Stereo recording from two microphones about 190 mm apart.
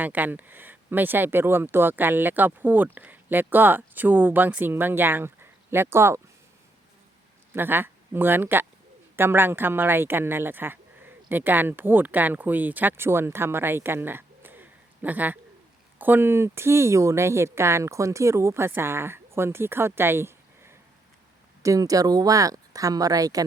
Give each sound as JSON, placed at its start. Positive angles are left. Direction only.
{"t": 0.0, "sound": "speech", "side_deg": -10}
{"t": 7.5, "sound": "speech", "side_deg": -10}